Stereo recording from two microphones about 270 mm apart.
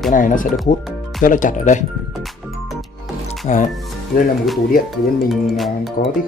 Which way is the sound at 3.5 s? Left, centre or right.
Left.